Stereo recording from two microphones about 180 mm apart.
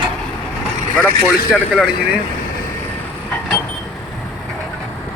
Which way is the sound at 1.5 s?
Centre (ahead or behind).